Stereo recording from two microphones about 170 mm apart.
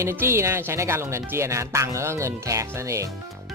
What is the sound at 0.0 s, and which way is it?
Speech, 15° right (ahead or behind).